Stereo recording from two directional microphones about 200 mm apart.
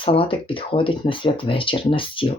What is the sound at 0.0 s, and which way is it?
A woman's voice, 25° left (ahead or behind).